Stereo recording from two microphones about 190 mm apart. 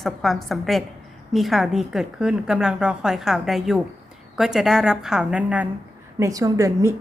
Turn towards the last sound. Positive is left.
turn(degrees=-15)  # may be behind; listen again after turning